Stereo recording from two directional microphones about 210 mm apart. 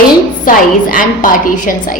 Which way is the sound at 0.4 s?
40° left (ahead or behind).